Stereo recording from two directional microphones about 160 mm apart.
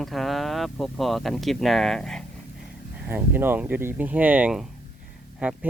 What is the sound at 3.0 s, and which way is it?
Speech, 10° right (ahead or behind).